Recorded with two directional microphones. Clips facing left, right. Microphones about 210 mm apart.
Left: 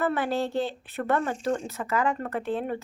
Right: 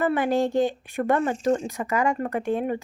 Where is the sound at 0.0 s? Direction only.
15° right (ahead or behind).